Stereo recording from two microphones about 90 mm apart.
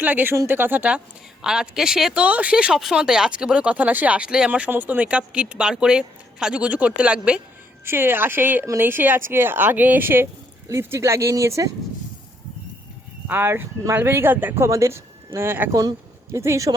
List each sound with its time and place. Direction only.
0.0 s speech: 20° right (ahead or behind)
7.9 s speech: 25° right (ahead or behind)
13.2 s speech: 25° right (ahead or behind)
15.7 s speech: 40° right (ahead or behind)